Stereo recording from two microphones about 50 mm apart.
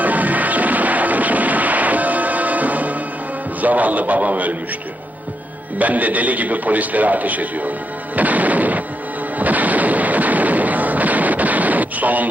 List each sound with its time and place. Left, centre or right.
0.0 s music: right
3.6 s a man's voice: right
5.8 s a man's voice: right
8.2 s music: right
9.4 s artillery fire: right